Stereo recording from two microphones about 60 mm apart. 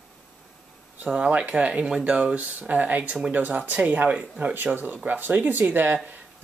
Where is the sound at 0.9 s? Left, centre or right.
Right.